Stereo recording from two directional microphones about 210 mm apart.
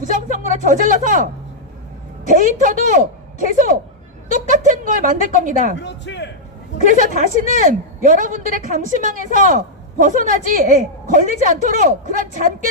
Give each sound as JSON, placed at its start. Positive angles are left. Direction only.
{"t": 0.0, "sound": "a woman's voice", "side_deg": -35}
{"t": 5.8, "sound": "a man's voice", "side_deg": 55}
{"t": 7.0, "sound": "a woman's voice", "side_deg": -40}